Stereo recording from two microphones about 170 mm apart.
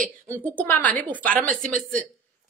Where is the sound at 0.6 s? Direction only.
10° left (ahead or behind).